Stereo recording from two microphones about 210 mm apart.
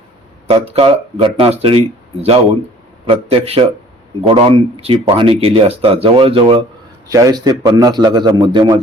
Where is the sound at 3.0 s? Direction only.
25° right (ahead or behind).